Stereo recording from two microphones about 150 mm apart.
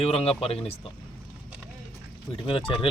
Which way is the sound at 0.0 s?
40° left (ahead or behind).